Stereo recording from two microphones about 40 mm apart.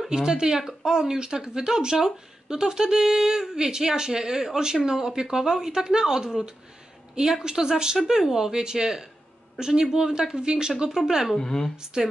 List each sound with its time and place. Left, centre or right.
0.1 s speech: centre
11.3 s speech: centre
11.7 s speech: centre